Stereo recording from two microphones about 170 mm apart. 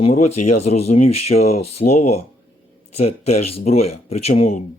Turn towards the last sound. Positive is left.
turn(degrees=35)  # may be behind; listen again after turning